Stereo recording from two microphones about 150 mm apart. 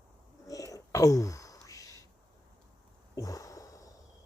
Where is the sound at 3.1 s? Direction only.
20° left (ahead or behind).